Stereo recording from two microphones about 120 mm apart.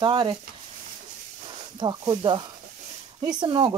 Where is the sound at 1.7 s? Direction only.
35° right (ahead or behind).